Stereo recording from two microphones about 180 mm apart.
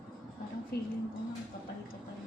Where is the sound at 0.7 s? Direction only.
60° left (ahead or behind).